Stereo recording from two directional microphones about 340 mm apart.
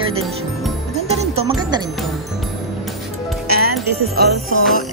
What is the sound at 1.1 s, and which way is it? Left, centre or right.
Speech, centre.